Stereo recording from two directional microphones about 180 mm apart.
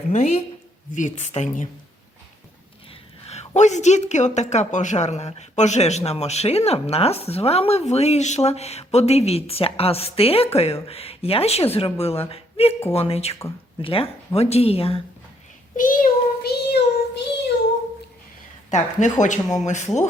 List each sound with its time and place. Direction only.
0.1 s a woman's voice: 35° left (ahead or behind)
3.2 s speech: 40° left (ahead or behind)
15.7 s child singing: 50° left (ahead or behind); by 17.2 s 65° left (ahead or behind)
18.7 s a woman's voice: 40° left (ahead or behind)